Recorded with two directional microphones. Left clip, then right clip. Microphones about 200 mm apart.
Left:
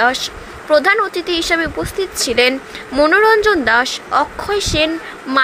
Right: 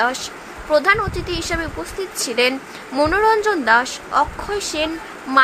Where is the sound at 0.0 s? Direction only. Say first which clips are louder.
Left 5 dB; 15° left (ahead or behind).